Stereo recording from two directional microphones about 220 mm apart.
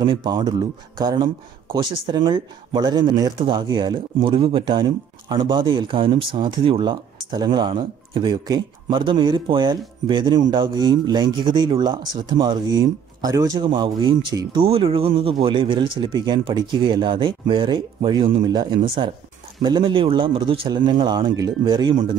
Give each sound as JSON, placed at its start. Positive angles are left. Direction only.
{"t": 0.0, "sound": "speech", "side_deg": -20}